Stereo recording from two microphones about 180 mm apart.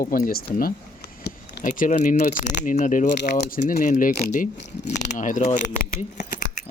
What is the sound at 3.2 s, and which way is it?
Speech, 60° left (ahead or behind).